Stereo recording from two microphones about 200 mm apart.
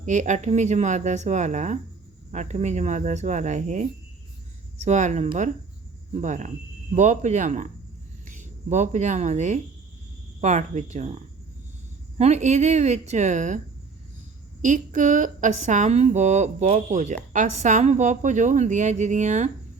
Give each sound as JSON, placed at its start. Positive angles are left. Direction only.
{"t": 0.0, "sound": "a woman's voice", "side_deg": -35}
{"t": 4.9, "sound": "a woman's voice", "side_deg": -35}
{"t": 8.7, "sound": "a woman's voice", "side_deg": -35}
{"t": 14.6, "sound": "a woman's voice", "side_deg": -40}